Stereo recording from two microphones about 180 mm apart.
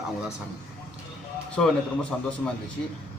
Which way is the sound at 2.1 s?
5° left (ahead or behind).